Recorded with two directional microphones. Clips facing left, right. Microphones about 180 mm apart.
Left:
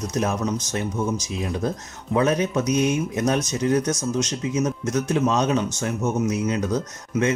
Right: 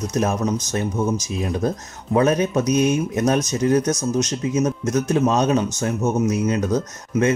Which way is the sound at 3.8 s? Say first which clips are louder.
Right 3 dB; 20° right (ahead or behind).